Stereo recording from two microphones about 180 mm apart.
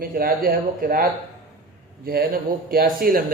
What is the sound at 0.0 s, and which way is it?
Speech, 55° right (ahead or behind).